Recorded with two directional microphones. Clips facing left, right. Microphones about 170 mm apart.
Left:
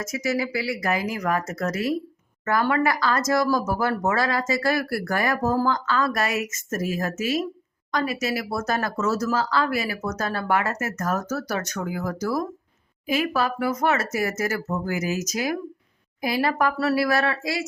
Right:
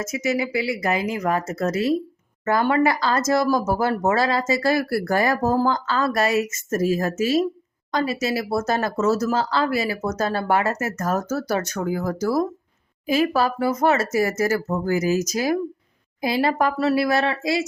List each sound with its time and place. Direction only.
0.0 s speech: 25° right (ahead or behind)